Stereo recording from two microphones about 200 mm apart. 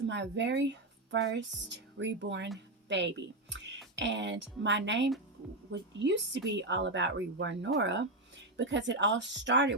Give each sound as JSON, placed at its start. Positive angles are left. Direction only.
{"t": 0.0, "sound": "speech", "side_deg": -65}